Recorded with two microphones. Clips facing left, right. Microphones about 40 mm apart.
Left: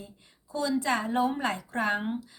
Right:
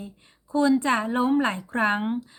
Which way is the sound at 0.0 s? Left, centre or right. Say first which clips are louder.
Right 6 dB; right.